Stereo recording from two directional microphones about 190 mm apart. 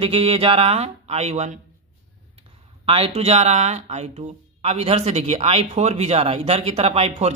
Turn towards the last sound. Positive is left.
turn(degrees=-35)  # may be behind; listen again after turning